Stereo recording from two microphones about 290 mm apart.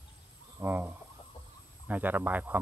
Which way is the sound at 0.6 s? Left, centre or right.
Centre.